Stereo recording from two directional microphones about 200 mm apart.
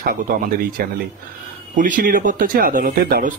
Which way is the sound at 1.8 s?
45° right (ahead or behind).